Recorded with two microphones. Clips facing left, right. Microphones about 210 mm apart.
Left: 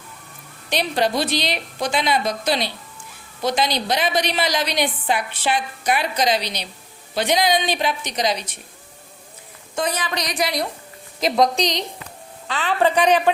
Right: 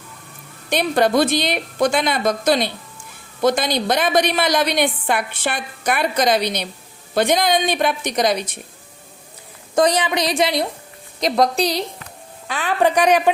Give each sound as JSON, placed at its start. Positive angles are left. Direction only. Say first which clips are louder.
{"t": 0.7, "sound": "a woman's voice", "louder": "right 4 dB", "side_deg": -50}
{"t": 10.2, "sound": "a woman's voice", "louder": "right 5 dB", "side_deg": -25}
{"t": 11.2, "sound": "a woman's voice", "louder": "right 1 dB", "side_deg": 0}